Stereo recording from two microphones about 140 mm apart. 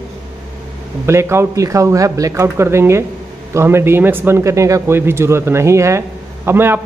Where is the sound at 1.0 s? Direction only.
20° right (ahead or behind).